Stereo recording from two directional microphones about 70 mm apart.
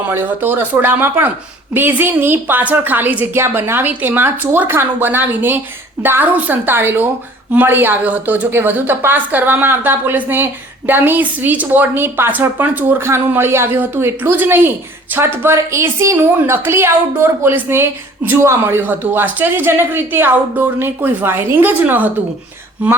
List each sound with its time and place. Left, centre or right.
0.1 s a woman's voice: right
13.1 s a woman's voice: right
15.5 s speech: right